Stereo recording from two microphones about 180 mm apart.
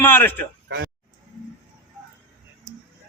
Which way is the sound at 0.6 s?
70° right (ahead or behind).